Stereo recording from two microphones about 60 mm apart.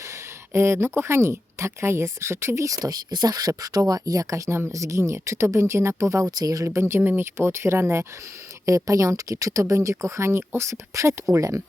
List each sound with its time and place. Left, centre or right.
0.1 s a sound: right
0.9 s speech: right
2.6 s speech: right
6.4 s speech: right
6.7 s speech: right
8.6 s speech: right